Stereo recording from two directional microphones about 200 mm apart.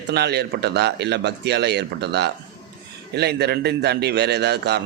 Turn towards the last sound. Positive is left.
turn(degrees=-55)  # may be behind; listen again after turning